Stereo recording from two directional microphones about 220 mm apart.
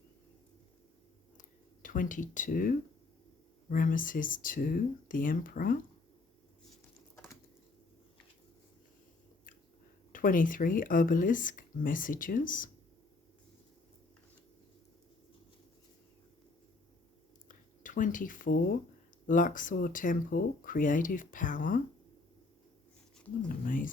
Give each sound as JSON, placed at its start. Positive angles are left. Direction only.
{"t": 1.4, "sound": "a sound", "side_deg": 40}
{"t": 3.7, "sound": "speech", "side_deg": 40}
{"t": 10.1, "sound": "speech", "side_deg": 40}
{"t": 17.8, "sound": "speech", "side_deg": 35}
{"t": 23.6, "sound": "speech", "side_deg": 40}